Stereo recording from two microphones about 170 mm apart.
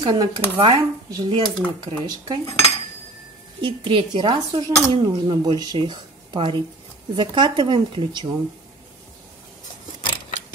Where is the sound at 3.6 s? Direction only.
30° right (ahead or behind).